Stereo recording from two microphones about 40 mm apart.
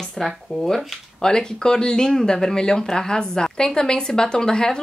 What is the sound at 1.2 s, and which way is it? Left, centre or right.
Speech, centre.